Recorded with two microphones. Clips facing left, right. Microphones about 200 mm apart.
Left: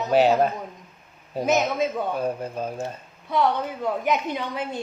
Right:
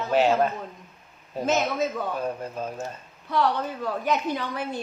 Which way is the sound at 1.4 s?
15° left (ahead or behind).